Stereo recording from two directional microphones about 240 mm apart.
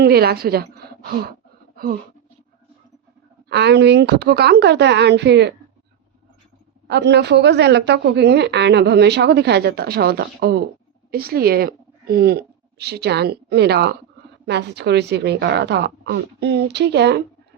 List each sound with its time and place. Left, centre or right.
0.0 s a woman's voice: right
1.7 s a sound: right
3.5 s a woman's voice: right
6.8 s a woman's voice: right